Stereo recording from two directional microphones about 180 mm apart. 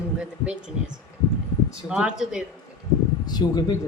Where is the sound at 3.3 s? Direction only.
20° left (ahead or behind).